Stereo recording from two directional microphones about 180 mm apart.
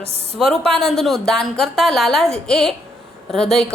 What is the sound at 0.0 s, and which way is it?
Speech, 35° right (ahead or behind).